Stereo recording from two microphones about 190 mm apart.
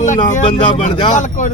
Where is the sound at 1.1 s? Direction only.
40° left (ahead or behind).